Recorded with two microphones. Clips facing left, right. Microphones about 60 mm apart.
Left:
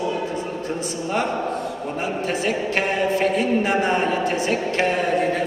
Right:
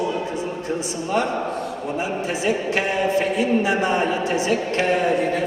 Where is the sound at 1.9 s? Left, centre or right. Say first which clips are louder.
Left 1 dB; left.